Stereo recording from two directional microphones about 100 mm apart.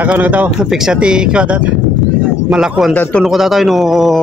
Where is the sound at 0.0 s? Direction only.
15° right (ahead or behind).